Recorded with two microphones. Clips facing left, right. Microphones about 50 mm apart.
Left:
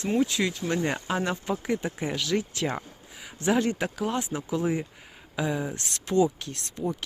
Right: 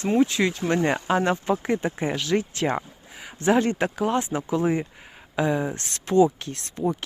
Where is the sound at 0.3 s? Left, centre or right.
Right.